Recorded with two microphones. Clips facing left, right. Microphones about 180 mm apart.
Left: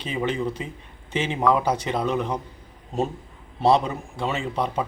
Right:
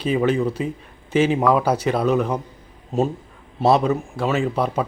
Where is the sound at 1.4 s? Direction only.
10° right (ahead or behind).